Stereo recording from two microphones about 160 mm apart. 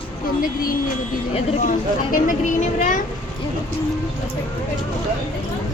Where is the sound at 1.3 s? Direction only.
50° left (ahead or behind).